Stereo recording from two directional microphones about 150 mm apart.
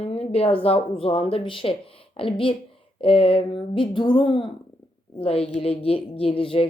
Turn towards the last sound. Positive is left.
turn(degrees=40)  # may be behind; listen again after turning